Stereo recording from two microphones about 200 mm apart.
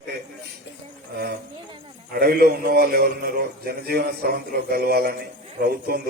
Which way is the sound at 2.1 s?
50° right (ahead or behind).